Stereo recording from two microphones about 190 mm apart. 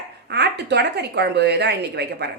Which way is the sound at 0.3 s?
60° right (ahead or behind).